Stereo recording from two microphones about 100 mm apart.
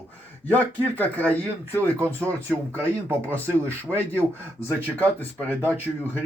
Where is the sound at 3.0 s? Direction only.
25° right (ahead or behind).